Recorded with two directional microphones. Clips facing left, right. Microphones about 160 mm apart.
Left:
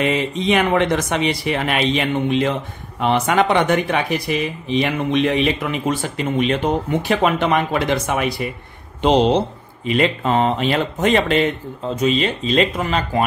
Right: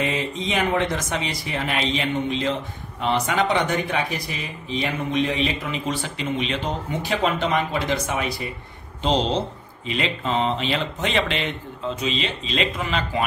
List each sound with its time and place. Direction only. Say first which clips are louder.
0.0 s speech: left 6 dB; 65° left (ahead or behind)
9.8 s speech: left 7 dB; 50° left (ahead or behind)